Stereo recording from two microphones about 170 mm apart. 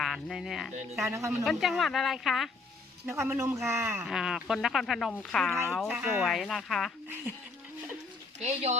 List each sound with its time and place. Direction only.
0.0 s speech: centre (ahead or behind)
1.1 s speech: 15° right (ahead or behind)
1.5 s speech: centre (ahead or behind)
3.1 s speech: 15° right (ahead or behind)
4.0 s speech: centre (ahead or behind)
8.4 s speech: 40° right (ahead or behind)